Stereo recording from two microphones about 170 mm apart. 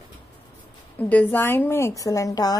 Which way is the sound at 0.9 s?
10° left (ahead or behind).